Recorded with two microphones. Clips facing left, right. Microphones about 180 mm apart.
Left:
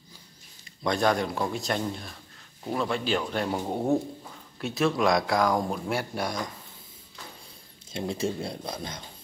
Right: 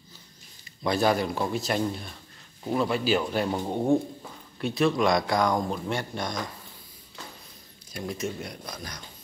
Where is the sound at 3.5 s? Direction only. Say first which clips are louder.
Right 1 dB; 5° left (ahead or behind).